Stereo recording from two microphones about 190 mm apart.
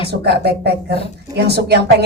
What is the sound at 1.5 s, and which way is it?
Speech, 60° right (ahead or behind).